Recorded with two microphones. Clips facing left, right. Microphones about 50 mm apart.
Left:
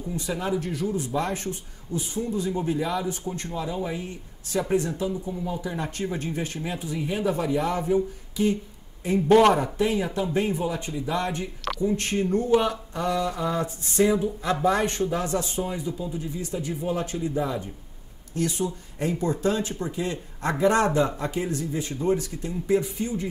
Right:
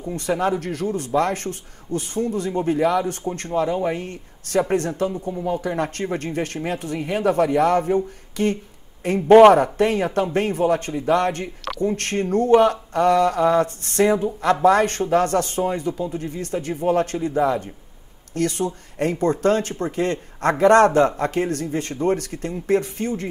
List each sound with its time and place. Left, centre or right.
0.1 s speech: right
10.9 s speech: right
11.1 s speech: right